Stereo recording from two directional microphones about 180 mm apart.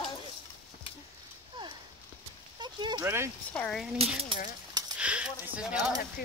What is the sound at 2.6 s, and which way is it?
Speech, 25° right (ahead or behind).